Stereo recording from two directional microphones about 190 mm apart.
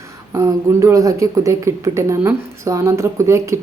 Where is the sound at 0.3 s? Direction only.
15° right (ahead or behind).